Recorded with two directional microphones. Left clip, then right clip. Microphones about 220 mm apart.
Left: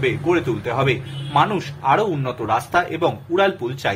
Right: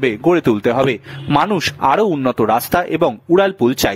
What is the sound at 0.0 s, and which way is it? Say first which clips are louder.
Speech: right 5 dB; 55° right (ahead or behind).